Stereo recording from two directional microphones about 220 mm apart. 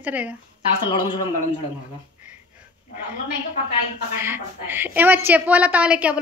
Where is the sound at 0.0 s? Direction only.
5° right (ahead or behind).